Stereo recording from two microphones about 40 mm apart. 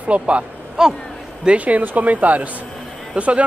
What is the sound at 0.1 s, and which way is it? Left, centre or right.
Speech, right.